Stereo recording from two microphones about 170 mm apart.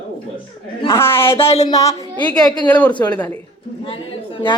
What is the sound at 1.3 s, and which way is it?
Speech, 35° left (ahead or behind).